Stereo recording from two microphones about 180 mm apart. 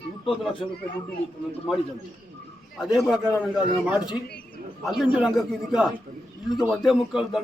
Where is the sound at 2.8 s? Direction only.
Centre (ahead or behind).